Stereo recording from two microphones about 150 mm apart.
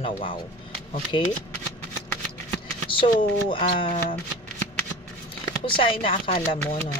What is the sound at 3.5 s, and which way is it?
Speech, 35° left (ahead or behind).